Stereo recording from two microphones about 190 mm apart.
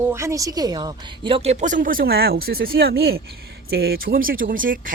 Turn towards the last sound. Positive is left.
turn(degrees=-45)  # may be behind; listen again after turning